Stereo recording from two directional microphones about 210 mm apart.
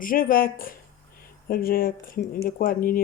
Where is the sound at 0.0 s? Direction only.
40° left (ahead or behind).